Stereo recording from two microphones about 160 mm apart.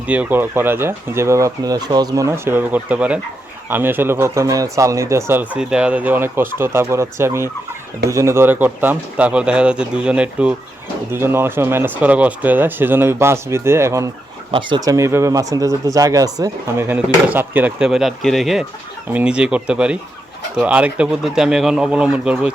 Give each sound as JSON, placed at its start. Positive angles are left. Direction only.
{"t": 0.1, "sound": "speech", "side_deg": -10}